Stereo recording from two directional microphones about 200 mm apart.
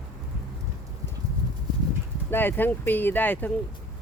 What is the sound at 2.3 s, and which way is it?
Speech, 10° left (ahead or behind).